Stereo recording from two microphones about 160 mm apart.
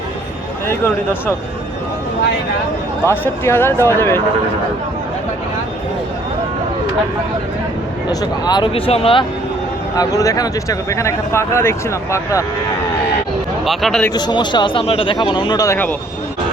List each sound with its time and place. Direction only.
3.1 s speech: 15° left (ahead or behind)
8.1 s speech: 25° left (ahead or behind)
9.9 s speech: 20° left (ahead or behind)
13.7 s speech: centre (ahead or behind)
14.1 s speech: 25° left (ahead or behind)